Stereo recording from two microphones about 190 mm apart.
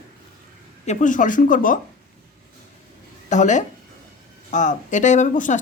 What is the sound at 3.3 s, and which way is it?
Speech, 40° left (ahead or behind).